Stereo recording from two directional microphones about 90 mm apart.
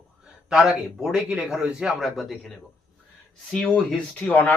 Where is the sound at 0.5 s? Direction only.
5° right (ahead or behind).